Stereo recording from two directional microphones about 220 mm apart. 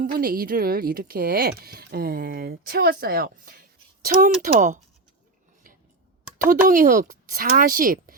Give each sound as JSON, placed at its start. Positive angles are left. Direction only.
{"t": 0.0, "sound": "speech", "side_deg": -40}
{"t": 6.5, "sound": "speech", "side_deg": -40}